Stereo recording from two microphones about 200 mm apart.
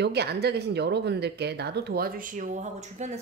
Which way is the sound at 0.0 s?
55° right (ahead or behind).